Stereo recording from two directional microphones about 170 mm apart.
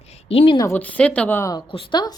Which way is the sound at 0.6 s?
15° left (ahead or behind).